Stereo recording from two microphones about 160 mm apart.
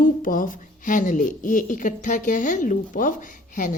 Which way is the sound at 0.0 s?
60° left (ahead or behind).